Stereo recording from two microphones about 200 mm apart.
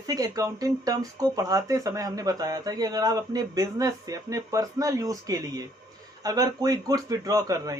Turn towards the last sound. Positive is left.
turn(degrees=-15)  # may be behind; listen again after turning